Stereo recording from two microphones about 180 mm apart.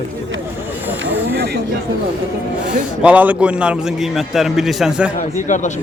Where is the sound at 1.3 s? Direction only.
65° right (ahead or behind).